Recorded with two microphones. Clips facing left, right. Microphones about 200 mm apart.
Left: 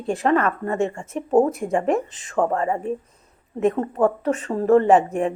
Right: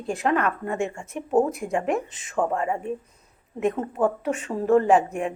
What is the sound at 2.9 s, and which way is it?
Speech, 35° left (ahead or behind).